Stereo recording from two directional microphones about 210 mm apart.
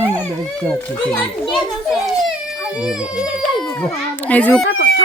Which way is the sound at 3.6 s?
5° left (ahead or behind).